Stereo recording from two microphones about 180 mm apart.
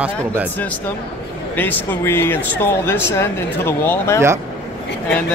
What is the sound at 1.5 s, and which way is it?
Speech, 10° left (ahead or behind).